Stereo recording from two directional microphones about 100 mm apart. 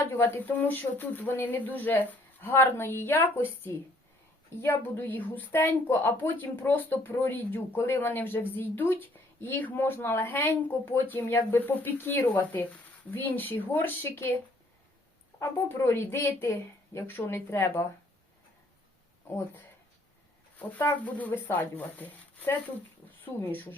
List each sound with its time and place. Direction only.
0.0 s speech: 20° left (ahead or behind)
4.4 s speech: 25° left (ahead or behind)
15.4 s speech: 25° left (ahead or behind)
20.6 s speech: 15° left (ahead or behind)